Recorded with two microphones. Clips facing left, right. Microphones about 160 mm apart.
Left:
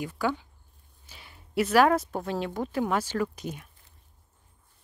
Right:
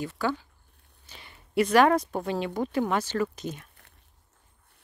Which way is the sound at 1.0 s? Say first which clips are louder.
Right 1 dB; 5° left (ahead or behind).